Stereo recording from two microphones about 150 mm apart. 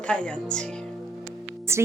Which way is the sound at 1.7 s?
15° right (ahead or behind).